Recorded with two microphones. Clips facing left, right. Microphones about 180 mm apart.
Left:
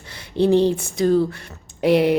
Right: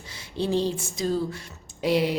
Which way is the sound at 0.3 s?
60° left (ahead or behind).